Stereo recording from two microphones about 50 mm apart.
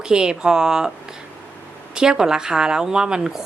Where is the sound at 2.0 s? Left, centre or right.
Centre.